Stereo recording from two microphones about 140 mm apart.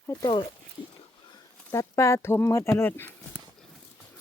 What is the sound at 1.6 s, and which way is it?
Speech, 20° left (ahead or behind).